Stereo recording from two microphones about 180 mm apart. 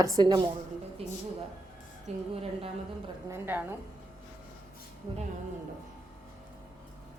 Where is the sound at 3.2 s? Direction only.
15° right (ahead or behind).